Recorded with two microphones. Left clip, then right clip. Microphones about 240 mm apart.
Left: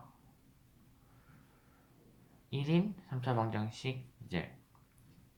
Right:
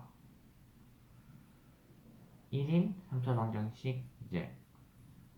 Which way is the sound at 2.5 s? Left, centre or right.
Left.